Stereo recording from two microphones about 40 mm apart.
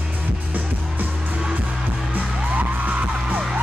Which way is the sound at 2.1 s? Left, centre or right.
Right.